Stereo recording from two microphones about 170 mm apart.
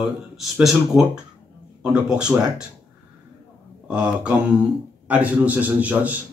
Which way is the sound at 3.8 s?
5° right (ahead or behind).